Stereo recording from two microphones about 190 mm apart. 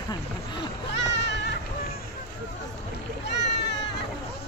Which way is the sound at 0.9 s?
65° left (ahead or behind).